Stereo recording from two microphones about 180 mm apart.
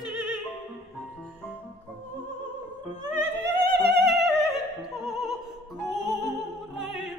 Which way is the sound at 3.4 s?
65° right (ahead or behind).